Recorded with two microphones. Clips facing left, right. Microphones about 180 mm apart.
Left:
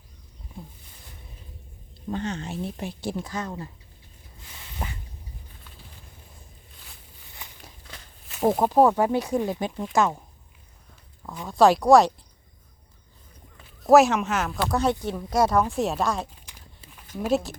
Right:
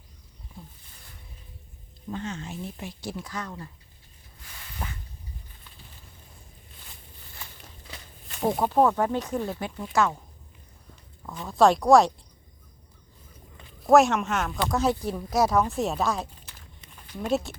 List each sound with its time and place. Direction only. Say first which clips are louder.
2.2 s a woman's voice: left 3 dB; 70° left (ahead or behind)
2.5 s speech: left 5 dB; 30° left (ahead or behind)
4.5 s a sound: left 2 dB; 20° left (ahead or behind)
7.4 s walk: even; 20° left (ahead or behind)
8.4 s speech: left 3 dB; 5° left (ahead or behind)
11.4 s speech: left 2 dB; centre (ahead or behind)
13.6 s speech: left 2 dB; 5° left (ahead or behind)